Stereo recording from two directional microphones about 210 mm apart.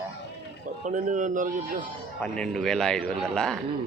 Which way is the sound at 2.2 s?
5° left (ahead or behind).